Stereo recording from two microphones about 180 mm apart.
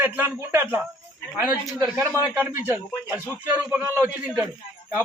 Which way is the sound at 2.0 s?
10° right (ahead or behind).